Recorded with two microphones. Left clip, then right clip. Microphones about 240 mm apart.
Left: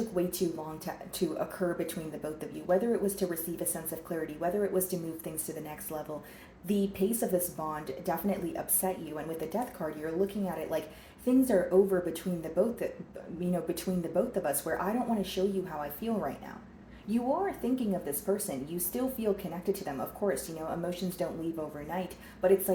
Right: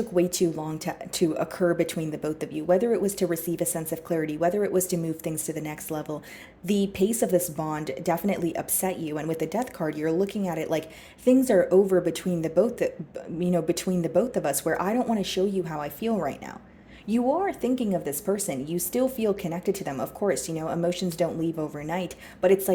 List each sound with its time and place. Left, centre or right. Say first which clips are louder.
0.1 s speech: right 8 dB; right